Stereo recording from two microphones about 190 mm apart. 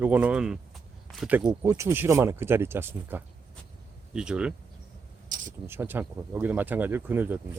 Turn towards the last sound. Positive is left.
turn(degrees=-10)  # may be behind; listen again after turning